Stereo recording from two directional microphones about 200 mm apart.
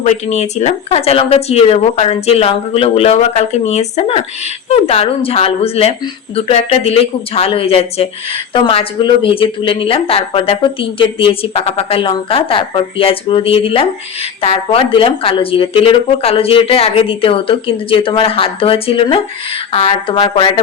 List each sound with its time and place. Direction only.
0.0 s speech: 35° left (ahead or behind)